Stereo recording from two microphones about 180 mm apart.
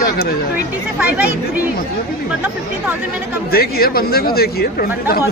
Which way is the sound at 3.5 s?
55° left (ahead or behind).